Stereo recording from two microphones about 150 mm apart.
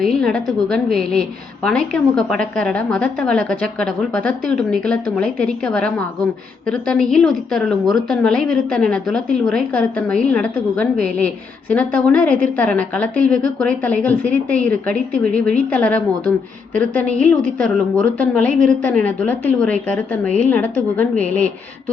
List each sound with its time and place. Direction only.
0.0 s a woman's voice: 5° left (ahead or behind)